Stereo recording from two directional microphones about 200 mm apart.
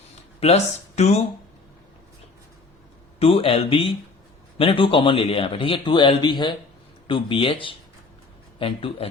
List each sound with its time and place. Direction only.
0.3 s speech: 30° left (ahead or behind)
3.2 s a man's voice: 30° left (ahead or behind)